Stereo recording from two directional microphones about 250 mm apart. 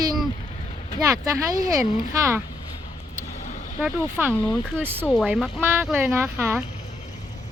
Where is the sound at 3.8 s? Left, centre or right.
Centre.